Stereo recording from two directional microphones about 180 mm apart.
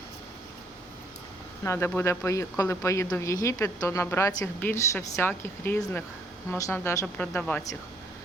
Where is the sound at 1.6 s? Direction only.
15° left (ahead or behind).